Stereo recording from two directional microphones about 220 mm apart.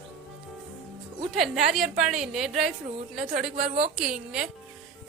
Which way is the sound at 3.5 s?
30° right (ahead or behind).